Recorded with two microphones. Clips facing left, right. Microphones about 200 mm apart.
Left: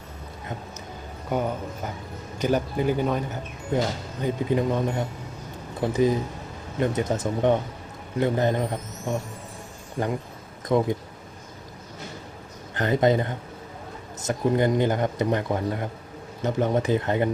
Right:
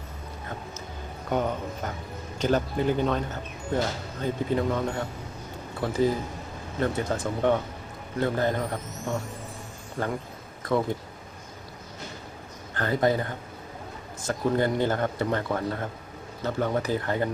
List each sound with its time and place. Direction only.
1.3 s speech: 10° left (ahead or behind)
12.7 s speech: 20° left (ahead or behind)